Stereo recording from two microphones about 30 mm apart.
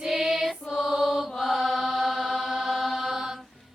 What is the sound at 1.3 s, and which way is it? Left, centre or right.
Mantra, centre.